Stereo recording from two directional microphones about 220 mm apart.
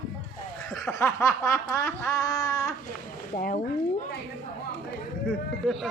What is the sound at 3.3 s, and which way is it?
Speech, 40° left (ahead or behind).